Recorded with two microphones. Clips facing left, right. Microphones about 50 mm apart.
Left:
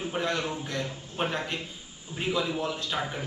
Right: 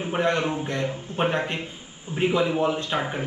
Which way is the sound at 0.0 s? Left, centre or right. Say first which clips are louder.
Right 6 dB; right.